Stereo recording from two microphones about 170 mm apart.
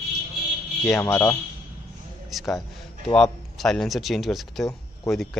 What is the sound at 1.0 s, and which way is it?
Speech, 15° left (ahead or behind).